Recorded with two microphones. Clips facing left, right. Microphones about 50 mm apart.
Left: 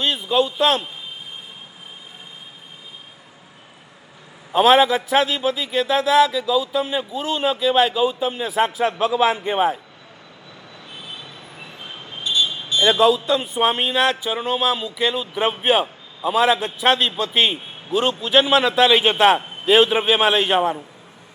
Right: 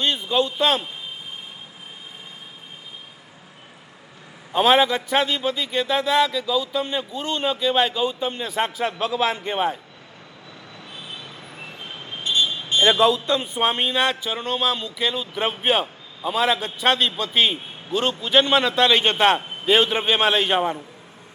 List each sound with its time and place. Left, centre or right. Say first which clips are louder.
0.0 s a man's voice: left 2 dB; centre
4.5 s a man's voice: left 3 dB; centre
12.2 s a sound: left 1 dB; right
12.8 s a man's voice: left 2 dB; centre